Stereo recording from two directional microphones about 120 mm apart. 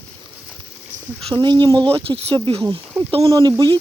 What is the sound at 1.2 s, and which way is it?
Speech, 40° right (ahead or behind).